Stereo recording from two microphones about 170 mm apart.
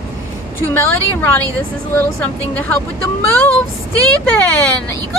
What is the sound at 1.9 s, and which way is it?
Speech, 10° left (ahead or behind).